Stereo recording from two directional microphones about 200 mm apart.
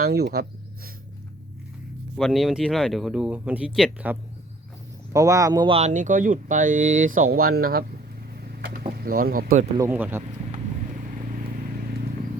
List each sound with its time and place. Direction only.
0.0 s speech: 50° right (ahead or behind)
2.1 s speech: centre (ahead or behind); by 7.9 s 50° right (ahead or behind)
8.4 s vehicle: 50° right (ahead or behind)
9.0 s speech: 45° right (ahead or behind)
9.7 s speech: 10° right (ahead or behind)